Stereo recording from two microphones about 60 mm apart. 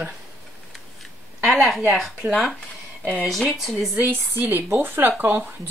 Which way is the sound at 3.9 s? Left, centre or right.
Right.